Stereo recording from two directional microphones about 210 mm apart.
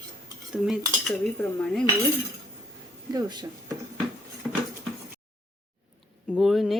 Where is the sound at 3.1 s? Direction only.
20° right (ahead or behind).